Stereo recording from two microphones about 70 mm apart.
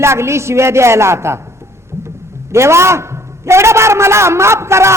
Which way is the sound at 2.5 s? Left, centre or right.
Right.